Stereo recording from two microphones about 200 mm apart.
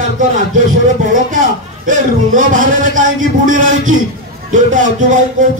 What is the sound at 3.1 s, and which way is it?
Speech, 80° right.